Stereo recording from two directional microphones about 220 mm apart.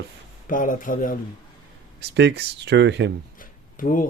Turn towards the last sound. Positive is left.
turn(degrees=40)  # may be behind; listen again after turning